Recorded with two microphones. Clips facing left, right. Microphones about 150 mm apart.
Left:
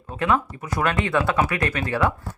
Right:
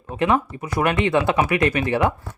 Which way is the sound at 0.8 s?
20° right (ahead or behind).